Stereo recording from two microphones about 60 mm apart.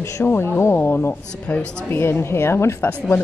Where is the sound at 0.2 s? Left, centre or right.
Left.